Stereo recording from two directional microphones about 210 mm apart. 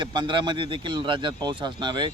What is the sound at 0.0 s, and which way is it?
Speech, 20° right (ahead or behind).